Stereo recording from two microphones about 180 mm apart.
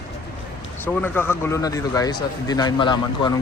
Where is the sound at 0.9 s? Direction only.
10° left (ahead or behind).